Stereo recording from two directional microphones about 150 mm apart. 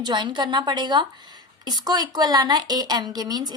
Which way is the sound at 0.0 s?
30° right (ahead or behind).